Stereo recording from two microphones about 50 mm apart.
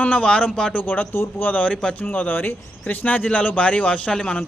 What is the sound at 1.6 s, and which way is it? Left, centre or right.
Speech, left.